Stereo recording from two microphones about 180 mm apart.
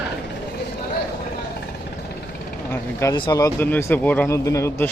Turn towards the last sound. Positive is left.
turn(degrees=15)  # may be behind; listen again after turning